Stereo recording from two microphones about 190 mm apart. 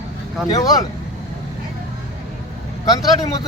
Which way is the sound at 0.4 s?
20° left (ahead or behind).